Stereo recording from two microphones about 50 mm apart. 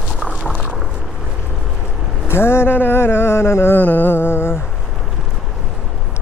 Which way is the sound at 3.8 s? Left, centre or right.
Left.